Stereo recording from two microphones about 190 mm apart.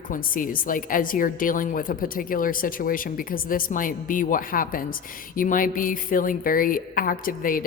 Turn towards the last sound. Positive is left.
turn(degrees=45)  # may be behind; listen again after turning